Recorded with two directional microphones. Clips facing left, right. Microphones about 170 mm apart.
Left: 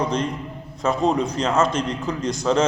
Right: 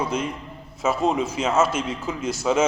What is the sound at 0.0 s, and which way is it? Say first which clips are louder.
A man's voice: left 2 dB; 5° right (ahead or behind).